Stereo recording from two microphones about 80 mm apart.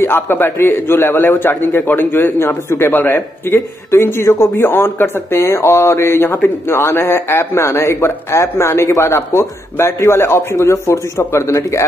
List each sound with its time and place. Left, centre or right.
0.0 s a man's voice: left